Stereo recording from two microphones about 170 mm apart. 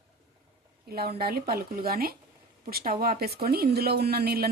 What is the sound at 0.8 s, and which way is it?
Speech, 65° right (ahead or behind).